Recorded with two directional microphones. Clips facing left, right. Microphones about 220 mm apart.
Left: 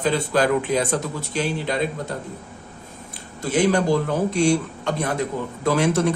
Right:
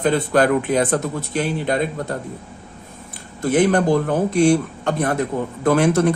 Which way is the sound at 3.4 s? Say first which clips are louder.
Right 3 dB; 50° right (ahead or behind).